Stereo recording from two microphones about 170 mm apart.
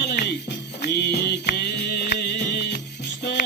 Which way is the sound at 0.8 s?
75° left (ahead or behind).